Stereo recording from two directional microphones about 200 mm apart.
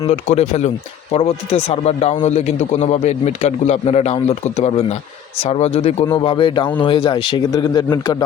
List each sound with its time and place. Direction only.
0.1 s a man's voice: 35° left (ahead or behind)